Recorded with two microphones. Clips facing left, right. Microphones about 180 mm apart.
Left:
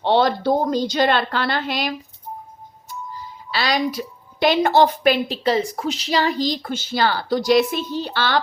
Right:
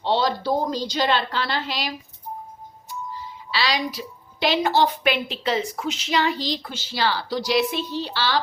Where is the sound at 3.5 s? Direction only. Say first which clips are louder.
Left 4 dB; 50° left (ahead or behind).